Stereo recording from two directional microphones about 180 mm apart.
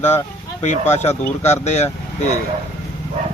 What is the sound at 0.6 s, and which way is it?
Speech, 40° left (ahead or behind).